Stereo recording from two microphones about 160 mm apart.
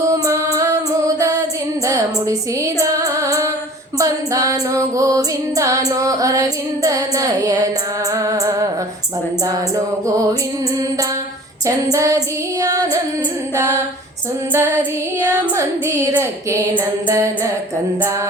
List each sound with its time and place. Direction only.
0.1 s music: 20° right (ahead or behind)
11.6 s music: 20° right (ahead or behind)
14.5 s a woman's voice: 15° right (ahead or behind)
17.1 s music: 20° right (ahead or behind)